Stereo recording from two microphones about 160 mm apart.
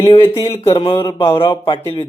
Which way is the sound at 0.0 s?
35° left (ahead or behind).